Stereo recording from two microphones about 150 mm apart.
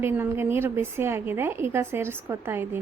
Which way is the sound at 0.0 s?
15° right (ahead or behind).